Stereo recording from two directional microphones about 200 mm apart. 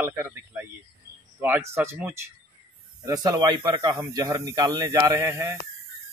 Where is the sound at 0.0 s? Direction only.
10° right (ahead or behind).